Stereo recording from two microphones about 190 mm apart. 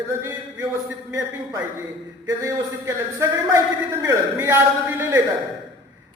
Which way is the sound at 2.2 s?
15° right (ahead or behind).